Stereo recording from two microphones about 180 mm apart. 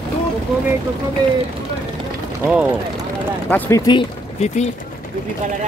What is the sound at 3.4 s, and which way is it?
Speech, 10° left (ahead or behind).